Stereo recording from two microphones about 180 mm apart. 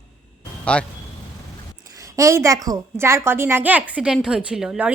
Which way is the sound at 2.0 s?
15° right (ahead or behind).